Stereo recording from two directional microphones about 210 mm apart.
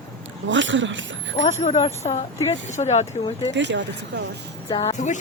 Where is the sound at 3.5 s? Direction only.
60° right (ahead or behind).